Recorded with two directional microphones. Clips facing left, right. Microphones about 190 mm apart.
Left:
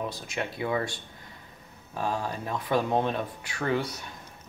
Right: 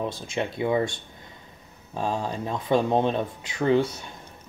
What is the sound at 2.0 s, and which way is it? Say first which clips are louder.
Speech: right 3 dB; 25° right (ahead or behind).